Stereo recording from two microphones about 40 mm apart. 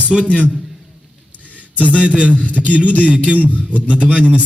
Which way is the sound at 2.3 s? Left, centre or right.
Left.